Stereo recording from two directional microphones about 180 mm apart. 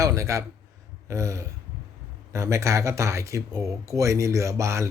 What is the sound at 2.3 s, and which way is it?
Speech, 15° right (ahead or behind).